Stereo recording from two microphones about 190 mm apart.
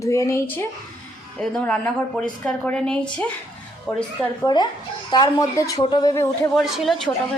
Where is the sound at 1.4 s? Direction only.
5° left (ahead or behind).